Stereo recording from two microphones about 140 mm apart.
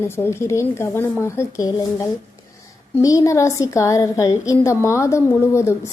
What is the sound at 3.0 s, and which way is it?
A woman's voice, 25° left (ahead or behind).